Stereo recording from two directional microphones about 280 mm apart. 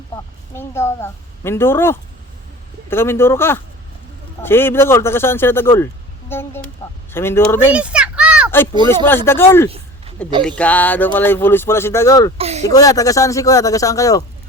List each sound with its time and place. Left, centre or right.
0.5 s speech: centre
7.7 s children playing: centre
9.0 s speech: centre
9.6 s a sound: right
10.4 s speech: centre
12.4 s speech: right
12.6 s speech: centre